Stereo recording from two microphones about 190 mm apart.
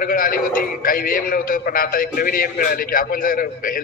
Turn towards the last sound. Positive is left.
turn(degrees=50)  # may be behind; listen again after turning